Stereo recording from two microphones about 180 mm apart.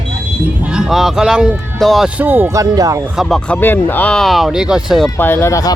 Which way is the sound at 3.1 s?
Centre (ahead or behind).